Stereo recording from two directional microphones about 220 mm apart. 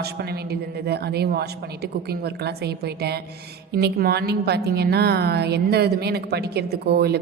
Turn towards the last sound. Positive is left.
turn(degrees=-50)  # may be behind; listen again after turning